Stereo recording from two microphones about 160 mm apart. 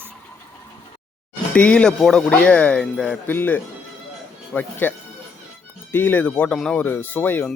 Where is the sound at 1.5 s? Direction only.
5° left (ahead or behind).